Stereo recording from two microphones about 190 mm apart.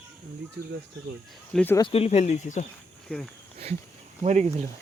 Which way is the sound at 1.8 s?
30° left (ahead or behind).